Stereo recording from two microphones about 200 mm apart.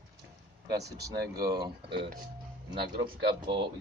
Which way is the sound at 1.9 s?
55° right (ahead or behind).